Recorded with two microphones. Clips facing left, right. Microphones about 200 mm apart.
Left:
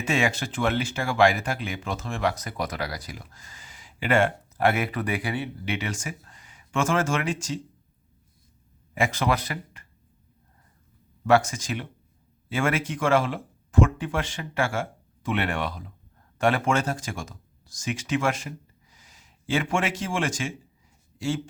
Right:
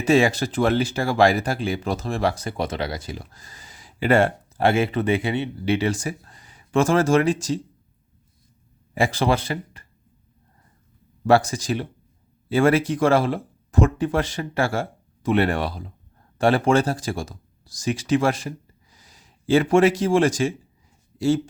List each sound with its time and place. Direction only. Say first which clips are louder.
0.0 s speech: right 8 dB; 35° right (ahead or behind)
9.0 s speech: right 4 dB; 30° right (ahead or behind)
11.2 s speech: right 3 dB; 35° right (ahead or behind)